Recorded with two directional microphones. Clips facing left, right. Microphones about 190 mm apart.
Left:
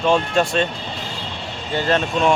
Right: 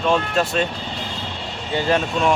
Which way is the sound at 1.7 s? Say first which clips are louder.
Even; 15° right (ahead or behind).